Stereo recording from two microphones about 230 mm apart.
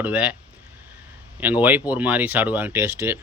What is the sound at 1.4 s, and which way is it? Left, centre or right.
Speech, centre.